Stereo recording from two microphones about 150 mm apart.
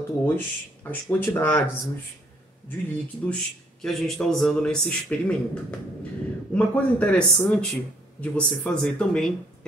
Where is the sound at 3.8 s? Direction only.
Centre (ahead or behind).